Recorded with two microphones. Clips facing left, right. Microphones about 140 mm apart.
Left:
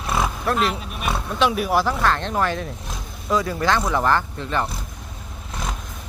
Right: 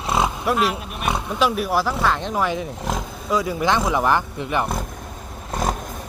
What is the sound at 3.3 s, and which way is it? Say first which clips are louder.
Speech: even; 10° right (ahead or behind).